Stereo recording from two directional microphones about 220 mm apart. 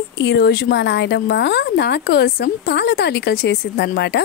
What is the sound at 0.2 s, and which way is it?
Speech, 50° left (ahead or behind).